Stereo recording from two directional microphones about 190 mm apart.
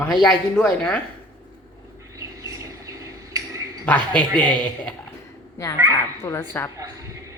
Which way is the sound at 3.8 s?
5° left (ahead or behind).